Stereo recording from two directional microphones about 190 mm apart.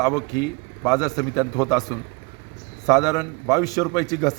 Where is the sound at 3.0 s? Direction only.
20° left (ahead or behind).